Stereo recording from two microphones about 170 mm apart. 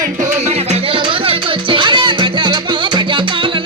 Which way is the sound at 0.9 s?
30° right (ahead or behind).